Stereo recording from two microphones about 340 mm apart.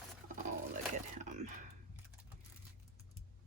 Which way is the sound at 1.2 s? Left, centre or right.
Right.